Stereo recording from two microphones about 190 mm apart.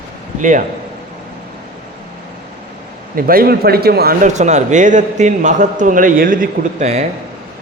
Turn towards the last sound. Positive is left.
turn(degrees=-35)  # may be behind; listen again after turning